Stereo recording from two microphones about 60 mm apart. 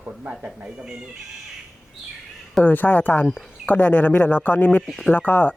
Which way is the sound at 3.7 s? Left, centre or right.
Left.